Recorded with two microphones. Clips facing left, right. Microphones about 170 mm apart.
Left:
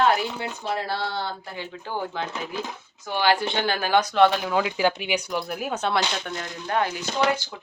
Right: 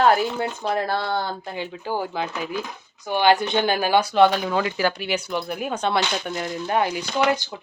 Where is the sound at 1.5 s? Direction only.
20° right (ahead or behind); by 6.0 s 5° left (ahead or behind).